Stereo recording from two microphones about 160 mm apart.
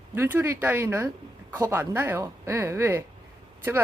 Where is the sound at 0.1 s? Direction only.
15° right (ahead or behind).